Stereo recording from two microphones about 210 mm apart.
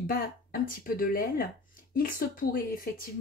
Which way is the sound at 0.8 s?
45° left (ahead or behind).